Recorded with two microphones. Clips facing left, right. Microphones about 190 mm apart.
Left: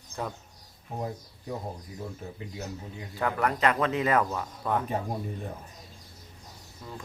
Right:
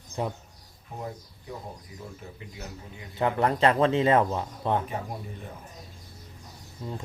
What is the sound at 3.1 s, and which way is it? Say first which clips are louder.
Speech: right 3 dB; 25° right (ahead or behind).